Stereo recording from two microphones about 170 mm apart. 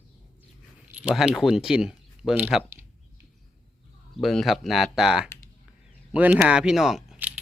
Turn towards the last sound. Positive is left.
turn(degrees=-5)  # may be behind; listen again after turning